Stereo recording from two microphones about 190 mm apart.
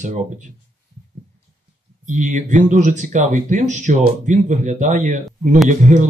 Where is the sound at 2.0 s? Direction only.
40° right (ahead or behind).